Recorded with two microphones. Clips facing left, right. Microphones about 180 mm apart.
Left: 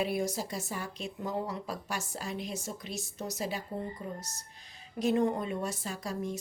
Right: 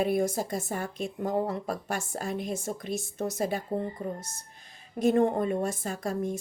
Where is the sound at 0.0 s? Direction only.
50° right (ahead or behind).